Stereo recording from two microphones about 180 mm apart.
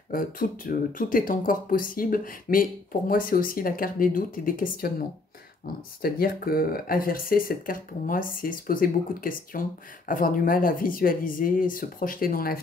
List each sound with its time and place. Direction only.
0.1 s speech: 50° left (ahead or behind)
6.0 s speech: 55° left (ahead or behind)